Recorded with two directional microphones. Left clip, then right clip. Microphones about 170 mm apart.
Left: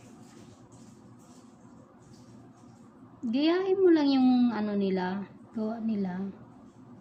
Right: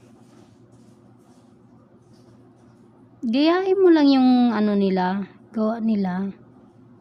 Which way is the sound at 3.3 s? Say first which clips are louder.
Right 7 dB; 90° right.